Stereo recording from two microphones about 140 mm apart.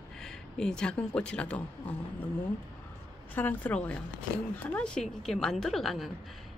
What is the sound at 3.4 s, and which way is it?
A woman's voice, 10° left (ahead or behind).